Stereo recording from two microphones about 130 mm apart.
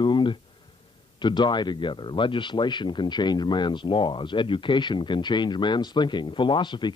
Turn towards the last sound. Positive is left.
turn(degrees=35)  # may be behind; listen again after turning